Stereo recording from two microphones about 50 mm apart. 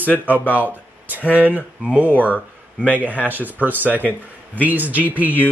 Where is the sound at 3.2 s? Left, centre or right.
Right.